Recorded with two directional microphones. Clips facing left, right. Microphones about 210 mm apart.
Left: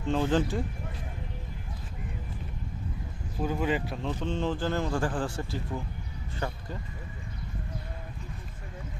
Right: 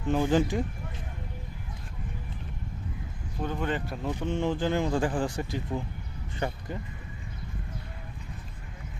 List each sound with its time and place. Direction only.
0.1 s a man's voice: 10° right (ahead or behind)
3.4 s speech: 5° left (ahead or behind)
4.0 s a man's voice: 10° right (ahead or behind)